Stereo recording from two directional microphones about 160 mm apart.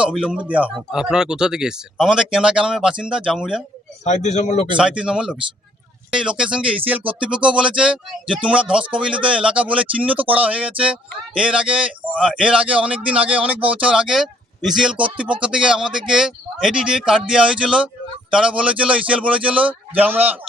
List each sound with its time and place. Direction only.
0.0 s speech: 5° right (ahead or behind)
4.0 s speech: 45° left (ahead or behind)
4.8 s a man's voice: 5° right (ahead or behind)